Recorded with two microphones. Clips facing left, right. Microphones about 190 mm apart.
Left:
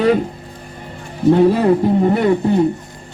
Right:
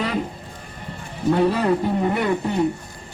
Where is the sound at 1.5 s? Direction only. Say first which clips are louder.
Left 6 dB; 25° left (ahead or behind).